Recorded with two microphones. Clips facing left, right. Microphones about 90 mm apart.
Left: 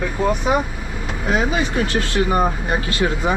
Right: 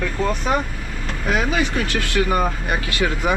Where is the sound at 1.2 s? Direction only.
20° left (ahead or behind).